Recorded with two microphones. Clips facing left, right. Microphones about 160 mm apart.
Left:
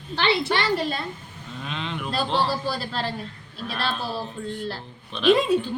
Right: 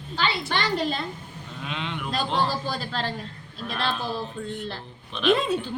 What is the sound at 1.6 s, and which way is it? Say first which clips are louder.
Speech: left 1 dB; 5° right (ahead or behind).